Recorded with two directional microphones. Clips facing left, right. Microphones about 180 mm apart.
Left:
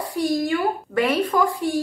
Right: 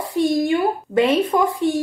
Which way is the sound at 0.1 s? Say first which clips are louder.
Right 4 dB; 25° right (ahead or behind).